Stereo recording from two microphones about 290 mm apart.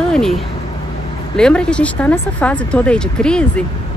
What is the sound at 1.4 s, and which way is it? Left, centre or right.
Speech, centre.